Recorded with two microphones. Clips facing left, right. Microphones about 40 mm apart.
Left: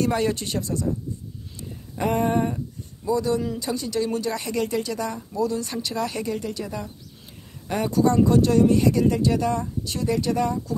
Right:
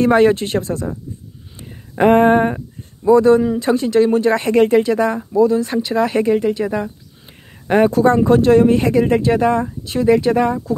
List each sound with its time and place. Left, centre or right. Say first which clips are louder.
0.0 s speech: right 11 dB; right
2.0 s a sound: right 11 dB; right
3.6 s speech: right 11 dB; right